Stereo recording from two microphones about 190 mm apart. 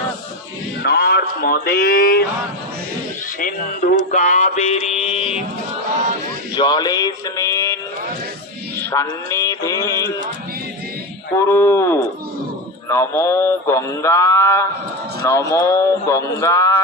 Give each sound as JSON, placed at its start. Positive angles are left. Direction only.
{"t": 0.8, "sound": "speech", "side_deg": 60}
{"t": 3.4, "sound": "mantra", "side_deg": 50}
{"t": 6.6, "sound": "speech", "side_deg": 20}
{"t": 8.8, "sound": "mantra", "side_deg": 15}
{"t": 11.3, "sound": "mantra", "side_deg": 15}